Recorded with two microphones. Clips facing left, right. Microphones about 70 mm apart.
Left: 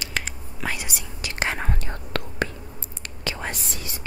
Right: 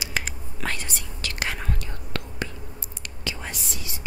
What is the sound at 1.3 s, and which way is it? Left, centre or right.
Whispering, left.